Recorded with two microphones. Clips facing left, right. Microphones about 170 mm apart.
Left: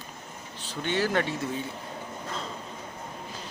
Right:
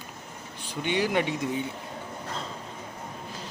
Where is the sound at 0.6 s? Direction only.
15° right (ahead or behind).